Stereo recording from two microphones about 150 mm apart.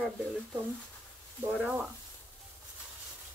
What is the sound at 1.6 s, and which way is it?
Speech, 10° right (ahead or behind).